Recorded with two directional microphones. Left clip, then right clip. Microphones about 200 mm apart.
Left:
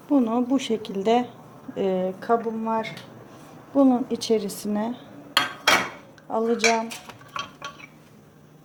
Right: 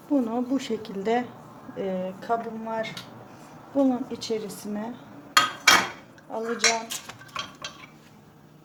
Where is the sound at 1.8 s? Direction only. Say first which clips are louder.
Left 6 dB; 40° left (ahead or behind).